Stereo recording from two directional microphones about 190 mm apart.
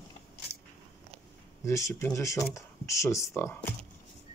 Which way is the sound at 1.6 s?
15° left (ahead or behind).